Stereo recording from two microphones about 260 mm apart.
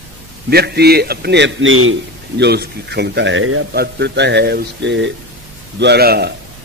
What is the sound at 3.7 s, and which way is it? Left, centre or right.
A man's voice, right.